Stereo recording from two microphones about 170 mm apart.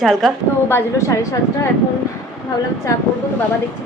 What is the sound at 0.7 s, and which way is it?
A woman's voice, 15° left (ahead or behind).